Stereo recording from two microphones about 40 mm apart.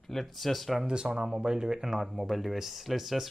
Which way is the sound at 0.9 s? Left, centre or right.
Right.